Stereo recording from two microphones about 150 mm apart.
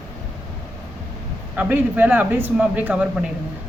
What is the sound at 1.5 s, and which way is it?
A woman's voice, 10° right (ahead or behind).